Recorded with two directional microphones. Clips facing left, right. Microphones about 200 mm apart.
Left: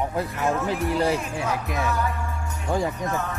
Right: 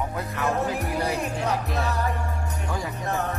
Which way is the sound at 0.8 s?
35° right (ahead or behind).